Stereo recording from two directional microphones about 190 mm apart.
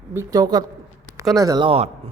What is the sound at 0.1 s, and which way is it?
A woman's voice, 15° right (ahead or behind).